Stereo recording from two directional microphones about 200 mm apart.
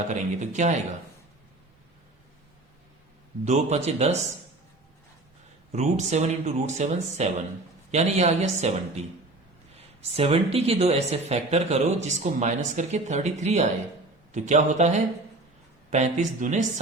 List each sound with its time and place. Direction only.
0.1 s speech: 35° right (ahead or behind)
3.4 s speech: 35° right (ahead or behind)
5.7 s speech: 35° right (ahead or behind)
10.2 s speech: 30° right (ahead or behind)